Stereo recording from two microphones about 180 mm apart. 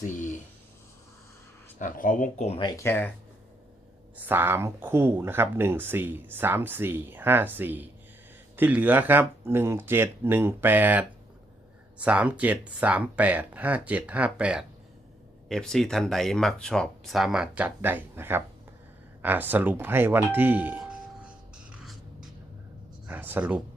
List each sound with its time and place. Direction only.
0.0 s a sound: 45° left (ahead or behind)
1.8 s speech: 45° left (ahead or behind)
2.6 s speech: 25° left (ahead or behind)
2.8 s speech: 10° left (ahead or behind)
4.2 s speech: 10° right (ahead or behind)
23.0 s speech: 10° right (ahead or behind)